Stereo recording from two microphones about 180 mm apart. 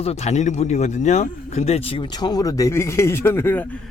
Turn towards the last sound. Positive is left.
turn(degrees=15)  # may be behind; listen again after turning